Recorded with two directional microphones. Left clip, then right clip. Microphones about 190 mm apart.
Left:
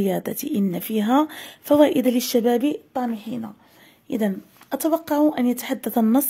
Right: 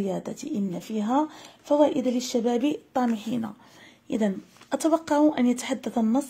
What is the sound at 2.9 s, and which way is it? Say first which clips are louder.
Speech: even; 5° left (ahead or behind).